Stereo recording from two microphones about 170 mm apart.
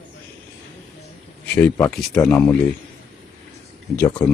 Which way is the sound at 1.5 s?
15° left (ahead or behind).